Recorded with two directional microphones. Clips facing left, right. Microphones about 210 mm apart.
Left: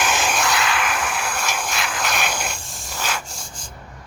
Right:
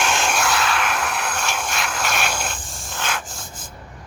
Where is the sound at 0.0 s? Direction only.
5° left (ahead or behind).